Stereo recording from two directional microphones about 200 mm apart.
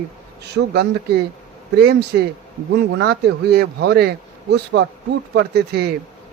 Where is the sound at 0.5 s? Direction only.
55° right (ahead or behind).